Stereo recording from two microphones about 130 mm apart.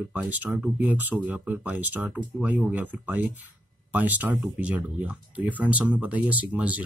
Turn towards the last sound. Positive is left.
turn(degrees=-10)  # may be behind; listen again after turning